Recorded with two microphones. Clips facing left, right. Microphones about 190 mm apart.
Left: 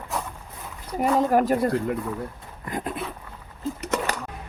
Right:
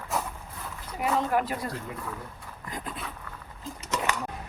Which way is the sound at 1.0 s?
45° left (ahead or behind).